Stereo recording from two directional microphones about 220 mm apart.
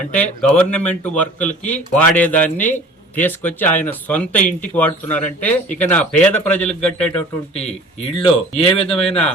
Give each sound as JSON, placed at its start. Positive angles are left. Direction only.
{"t": 0.2, "sound": "a man's voice", "side_deg": 5}
{"t": 7.5, "sound": "speech", "side_deg": 30}
{"t": 8.6, "sound": "a man's voice", "side_deg": 5}